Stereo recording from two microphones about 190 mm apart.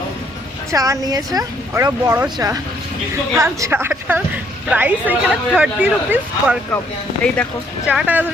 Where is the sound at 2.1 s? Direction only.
5° right (ahead or behind).